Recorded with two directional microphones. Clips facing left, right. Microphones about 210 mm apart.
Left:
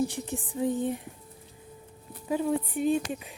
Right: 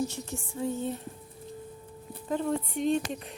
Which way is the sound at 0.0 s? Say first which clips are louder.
Left 3 dB; 15° left (ahead or behind).